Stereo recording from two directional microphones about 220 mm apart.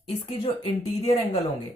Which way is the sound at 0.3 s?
20° left (ahead or behind).